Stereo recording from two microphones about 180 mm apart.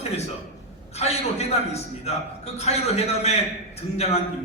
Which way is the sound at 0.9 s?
35° left (ahead or behind).